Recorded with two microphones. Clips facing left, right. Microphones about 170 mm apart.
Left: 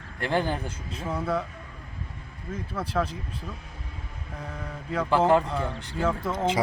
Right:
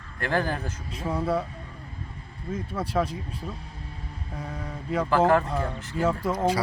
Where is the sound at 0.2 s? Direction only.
20° left (ahead or behind).